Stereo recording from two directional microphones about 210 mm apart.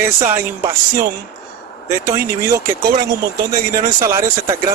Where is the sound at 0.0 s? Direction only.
10° right (ahead or behind).